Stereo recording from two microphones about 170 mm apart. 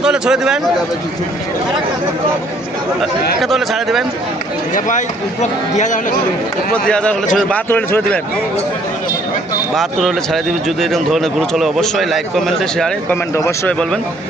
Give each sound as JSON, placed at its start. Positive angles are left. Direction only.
{"t": 0.0, "sound": "speech", "side_deg": -5}
{"t": 3.4, "sound": "speech", "side_deg": 0}
{"t": 4.7, "sound": "a man's voice", "side_deg": 50}
{"t": 6.7, "sound": "a man's voice", "side_deg": 5}
{"t": 9.7, "sound": "a man's voice", "side_deg": 0}